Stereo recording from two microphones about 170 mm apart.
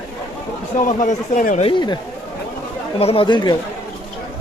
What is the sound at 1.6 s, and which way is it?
Speech, 25° left (ahead or behind).